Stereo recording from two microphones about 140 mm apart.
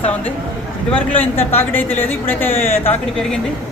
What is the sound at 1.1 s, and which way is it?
Speech, 15° left (ahead or behind).